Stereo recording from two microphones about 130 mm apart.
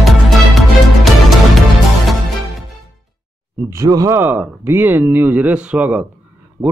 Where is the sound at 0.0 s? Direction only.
Centre (ahead or behind).